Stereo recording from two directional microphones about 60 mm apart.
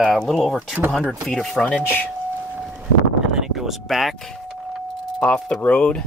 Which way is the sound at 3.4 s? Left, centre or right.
Centre.